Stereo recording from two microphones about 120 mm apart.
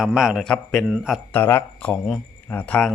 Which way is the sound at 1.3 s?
15° left (ahead or behind).